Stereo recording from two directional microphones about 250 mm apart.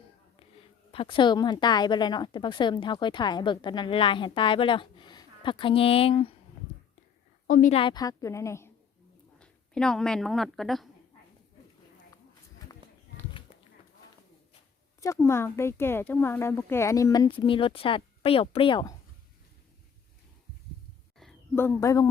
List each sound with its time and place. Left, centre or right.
0.9 s a woman's voice: left
7.4 s speech: left; by 10.8 s centre
15.0 s speech: centre
21.2 s a sound: centre